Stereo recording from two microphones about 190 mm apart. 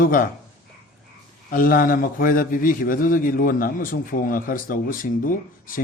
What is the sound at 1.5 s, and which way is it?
A man's voice, 50° left (ahead or behind).